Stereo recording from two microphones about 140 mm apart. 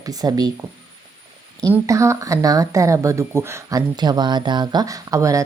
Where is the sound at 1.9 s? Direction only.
20° right (ahead or behind).